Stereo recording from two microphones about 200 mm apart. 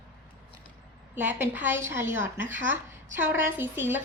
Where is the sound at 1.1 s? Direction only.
10° right (ahead or behind).